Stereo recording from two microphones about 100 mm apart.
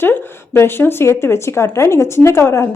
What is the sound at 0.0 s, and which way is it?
Speech, 25° left (ahead or behind).